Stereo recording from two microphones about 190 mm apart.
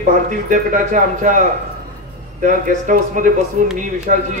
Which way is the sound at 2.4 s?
45° right (ahead or behind).